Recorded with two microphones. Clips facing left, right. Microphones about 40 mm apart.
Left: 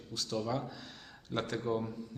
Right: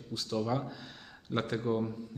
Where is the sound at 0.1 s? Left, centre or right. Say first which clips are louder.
Right 3 dB; centre.